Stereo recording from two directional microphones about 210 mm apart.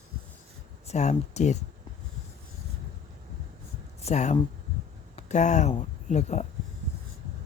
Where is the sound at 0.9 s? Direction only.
30° left (ahead or behind).